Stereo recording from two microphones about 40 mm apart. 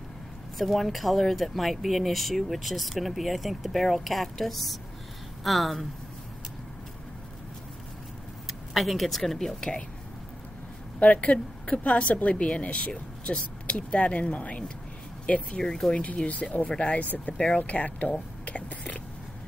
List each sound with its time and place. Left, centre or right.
0.6 s speech: centre
8.5 s speech: centre
11.0 s a woman's voice: left
15.5 s speech: centre
16.3 s a woman's voice: left
18.4 s whispering: left